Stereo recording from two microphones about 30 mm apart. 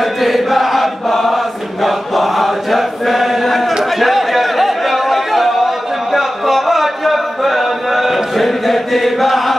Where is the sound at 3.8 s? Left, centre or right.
Centre.